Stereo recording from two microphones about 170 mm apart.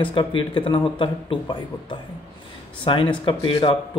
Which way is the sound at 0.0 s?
30° left (ahead or behind).